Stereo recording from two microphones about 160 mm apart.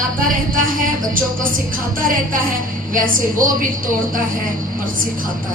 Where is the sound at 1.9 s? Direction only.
60° right (ahead or behind).